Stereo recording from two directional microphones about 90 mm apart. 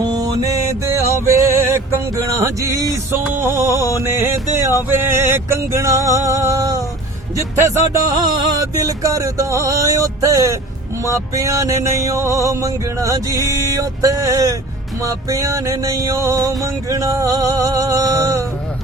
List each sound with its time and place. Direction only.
0.0 s mantra: 45° right (ahead or behind)
0.9 s music: 35° right (ahead or behind)